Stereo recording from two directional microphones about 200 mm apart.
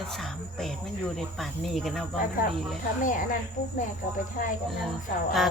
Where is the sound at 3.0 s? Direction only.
40° left (ahead or behind).